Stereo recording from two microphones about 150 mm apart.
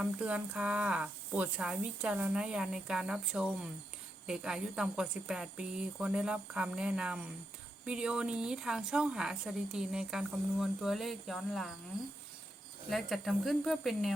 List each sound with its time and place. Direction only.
0.0 s a woman's voice: 10° right (ahead or behind)
12.9 s a woman's voice: centre (ahead or behind)